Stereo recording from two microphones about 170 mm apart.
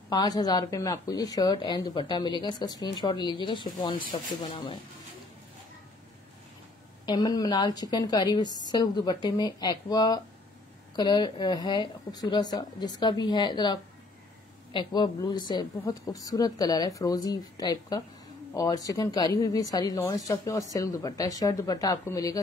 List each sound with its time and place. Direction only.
0.1 s speech: 20° left (ahead or behind)
7.1 s speech: 25° left (ahead or behind)